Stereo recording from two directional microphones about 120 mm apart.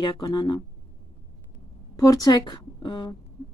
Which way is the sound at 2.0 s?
30° left (ahead or behind).